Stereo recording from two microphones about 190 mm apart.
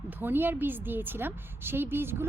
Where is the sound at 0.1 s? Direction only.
10° right (ahead or behind).